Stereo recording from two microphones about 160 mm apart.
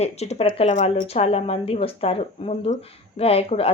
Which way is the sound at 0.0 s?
45° left (ahead or behind).